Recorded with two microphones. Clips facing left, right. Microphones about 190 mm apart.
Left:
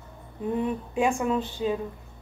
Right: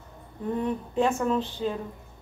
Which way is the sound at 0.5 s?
10° left (ahead or behind).